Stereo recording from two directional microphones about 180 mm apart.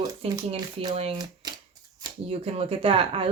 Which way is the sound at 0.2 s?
30° right (ahead or behind).